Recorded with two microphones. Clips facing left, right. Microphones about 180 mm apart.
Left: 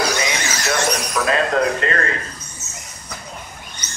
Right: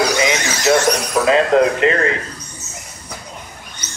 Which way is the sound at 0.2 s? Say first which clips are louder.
Right 6 dB; 20° right (ahead or behind).